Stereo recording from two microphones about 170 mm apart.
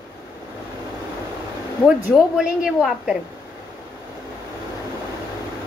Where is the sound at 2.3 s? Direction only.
5° right (ahead or behind).